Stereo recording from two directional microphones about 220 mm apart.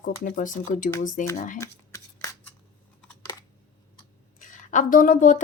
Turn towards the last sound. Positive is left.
turn(degrees=35)  # may be behind; listen again after turning